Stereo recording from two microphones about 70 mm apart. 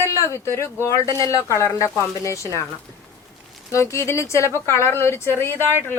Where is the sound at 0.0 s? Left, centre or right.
Left.